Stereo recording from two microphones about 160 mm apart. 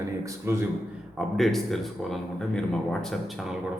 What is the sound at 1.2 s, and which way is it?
A man's voice, centre (ahead or behind).